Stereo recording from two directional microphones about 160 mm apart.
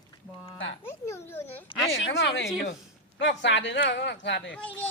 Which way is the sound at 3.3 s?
90° left.